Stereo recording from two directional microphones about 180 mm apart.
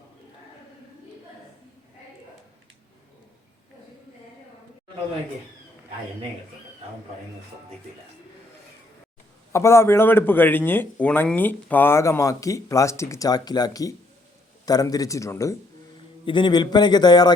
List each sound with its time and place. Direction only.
9.5 s a man's voice: 15° left (ahead or behind)